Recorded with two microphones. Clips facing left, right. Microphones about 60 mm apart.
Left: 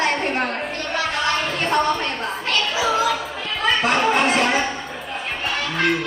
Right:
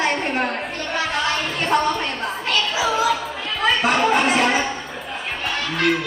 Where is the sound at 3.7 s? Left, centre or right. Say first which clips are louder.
Right 1 dB; centre.